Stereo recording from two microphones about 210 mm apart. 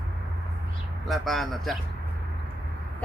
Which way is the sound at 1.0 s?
Centre (ahead or behind).